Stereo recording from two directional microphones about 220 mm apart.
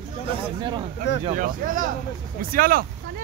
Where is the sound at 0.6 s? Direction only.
20° right (ahead or behind).